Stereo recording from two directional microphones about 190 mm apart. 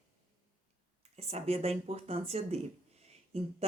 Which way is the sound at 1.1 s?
35° right (ahead or behind).